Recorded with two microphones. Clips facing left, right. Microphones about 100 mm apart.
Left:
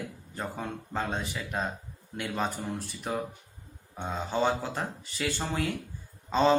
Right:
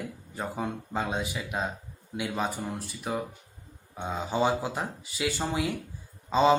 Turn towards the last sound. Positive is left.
turn(degrees=-10)  # may be behind; listen again after turning